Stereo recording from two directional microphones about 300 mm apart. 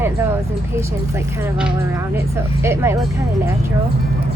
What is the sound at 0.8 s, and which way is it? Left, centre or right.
Speech, centre.